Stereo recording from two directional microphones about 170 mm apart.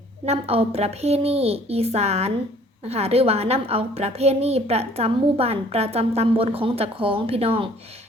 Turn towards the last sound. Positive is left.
turn(degrees=-35)  # may be behind; listen again after turning